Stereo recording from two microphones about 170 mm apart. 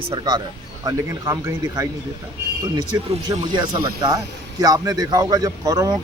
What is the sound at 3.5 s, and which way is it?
Speech, 25° right (ahead or behind).